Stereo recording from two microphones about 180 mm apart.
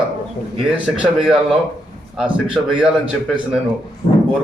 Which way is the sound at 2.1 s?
5° right (ahead or behind).